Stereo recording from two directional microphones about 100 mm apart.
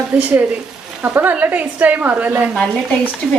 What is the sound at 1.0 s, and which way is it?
Speech, 20° right (ahead or behind).